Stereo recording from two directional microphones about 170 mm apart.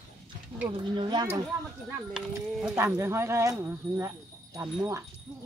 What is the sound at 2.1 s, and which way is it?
Speech, 5° right (ahead or behind).